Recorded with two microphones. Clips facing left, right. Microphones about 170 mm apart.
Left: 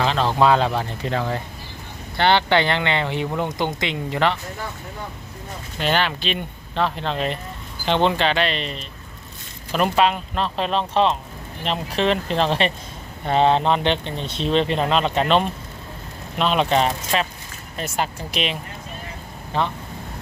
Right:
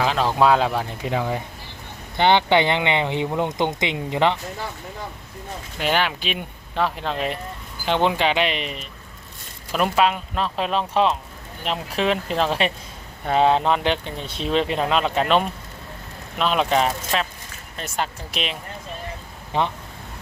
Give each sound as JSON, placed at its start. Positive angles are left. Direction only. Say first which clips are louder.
{"t": 0.0, "sound": "speech", "louder": "even", "side_deg": -5}
{"t": 5.8, "sound": "speech", "louder": "left 1 dB", "side_deg": -10}
{"t": 19.5, "sound": "speech", "louder": "even", "side_deg": -20}